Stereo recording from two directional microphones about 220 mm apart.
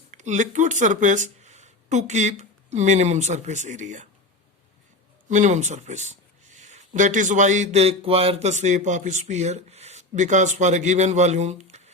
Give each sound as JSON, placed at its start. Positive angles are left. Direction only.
{"t": 0.1, "sound": "speech", "side_deg": -35}
{"t": 5.3, "sound": "speech", "side_deg": -35}